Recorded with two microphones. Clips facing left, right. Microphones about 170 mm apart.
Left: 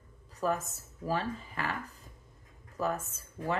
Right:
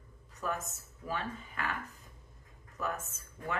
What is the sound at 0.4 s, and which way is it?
Speech, 35° left (ahead or behind).